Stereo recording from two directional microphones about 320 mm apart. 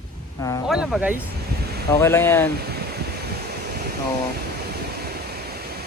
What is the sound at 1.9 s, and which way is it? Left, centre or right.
Speech, centre.